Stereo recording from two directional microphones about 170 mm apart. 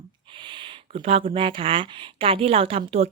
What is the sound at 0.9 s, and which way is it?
A woman's voice, 35° right (ahead or behind).